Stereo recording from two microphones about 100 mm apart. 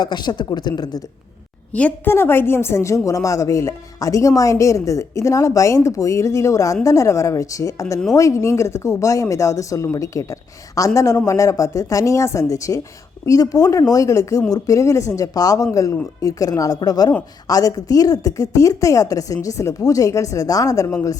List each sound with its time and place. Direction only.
0.0 s speech: 45° left (ahead or behind)
1.7 s a woman's voice: 15° left (ahead or behind); by 21.2 s 30° left (ahead or behind)